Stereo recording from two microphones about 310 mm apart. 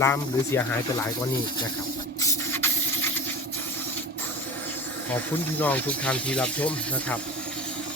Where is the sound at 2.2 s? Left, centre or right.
Centre.